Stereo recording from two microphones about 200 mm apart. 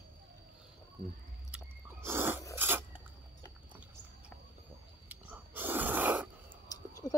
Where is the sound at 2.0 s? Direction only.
10° right (ahead or behind).